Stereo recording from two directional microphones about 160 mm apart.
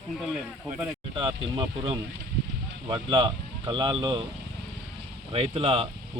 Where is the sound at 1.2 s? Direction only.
30° right (ahead or behind).